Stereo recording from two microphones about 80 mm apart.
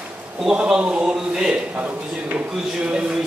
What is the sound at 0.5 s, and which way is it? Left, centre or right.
A man's voice, centre.